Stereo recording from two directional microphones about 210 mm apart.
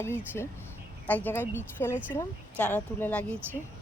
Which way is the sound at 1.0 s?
10° left (ahead or behind).